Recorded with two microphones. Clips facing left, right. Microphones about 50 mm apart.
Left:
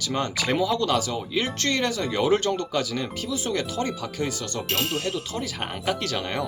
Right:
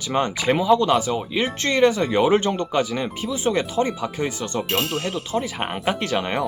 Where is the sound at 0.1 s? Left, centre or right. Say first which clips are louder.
Right 5 dB; right.